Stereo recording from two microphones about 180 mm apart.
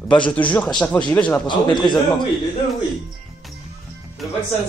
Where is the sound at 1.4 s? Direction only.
25° left (ahead or behind).